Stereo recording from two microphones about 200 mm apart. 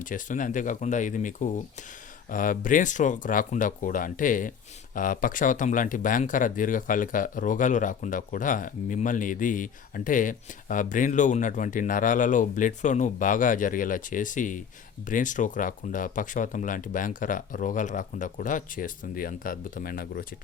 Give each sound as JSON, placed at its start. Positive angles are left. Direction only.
{"t": 0.0, "sound": "speech", "side_deg": 40}